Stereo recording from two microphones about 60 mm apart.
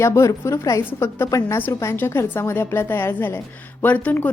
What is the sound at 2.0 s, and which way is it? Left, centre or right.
A woman's voice, left.